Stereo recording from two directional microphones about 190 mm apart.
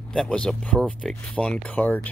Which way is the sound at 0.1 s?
5° left (ahead or behind).